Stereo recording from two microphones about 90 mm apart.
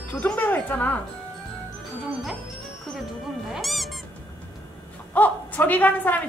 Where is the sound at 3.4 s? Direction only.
Centre (ahead or behind).